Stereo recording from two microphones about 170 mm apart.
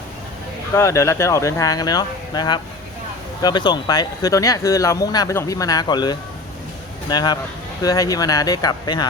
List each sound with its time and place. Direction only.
0.8 s speech: 15° left (ahead or behind)